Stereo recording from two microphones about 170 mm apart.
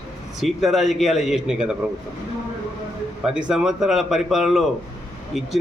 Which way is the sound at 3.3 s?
5° right (ahead or behind).